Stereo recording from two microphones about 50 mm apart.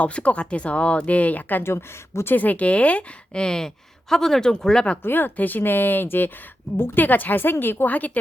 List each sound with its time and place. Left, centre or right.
0.0 s speech: left
1.6 s speech: left
2.3 s speech: left; by 4.9 s centre
5.0 s a woman's voice: left